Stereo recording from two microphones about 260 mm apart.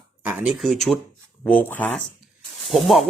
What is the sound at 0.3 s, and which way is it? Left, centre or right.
Speech, centre.